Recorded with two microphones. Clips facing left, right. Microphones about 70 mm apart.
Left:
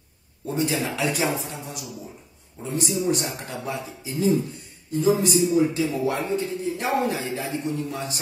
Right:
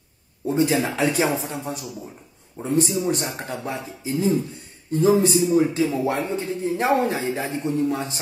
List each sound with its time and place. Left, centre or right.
0.5 s a man's voice: right
3.6 s a man's voice: right